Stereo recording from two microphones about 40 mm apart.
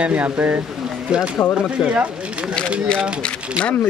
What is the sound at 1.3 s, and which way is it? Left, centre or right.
Speech, left.